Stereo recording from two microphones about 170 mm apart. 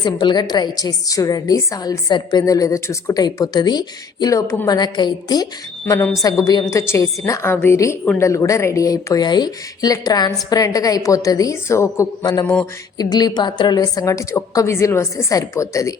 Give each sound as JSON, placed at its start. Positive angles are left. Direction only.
{"t": 0.0, "sound": "a woman's voice", "side_deg": 25}
{"t": 5.8, "sound": "a woman's voice", "side_deg": 10}